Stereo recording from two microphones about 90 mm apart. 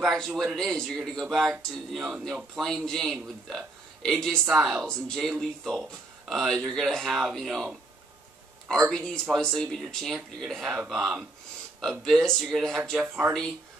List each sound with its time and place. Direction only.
0.0 s a man's voice: centre (ahead or behind)
4.6 s speech: 5° right (ahead or behind)
4.8 s a man's voice: 5° left (ahead or behind)
8.8 s a man's voice: 5° left (ahead or behind)
13.0 s speech: 20° right (ahead or behind)